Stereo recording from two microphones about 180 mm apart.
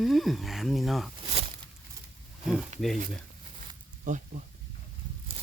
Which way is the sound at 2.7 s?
40° right (ahead or behind).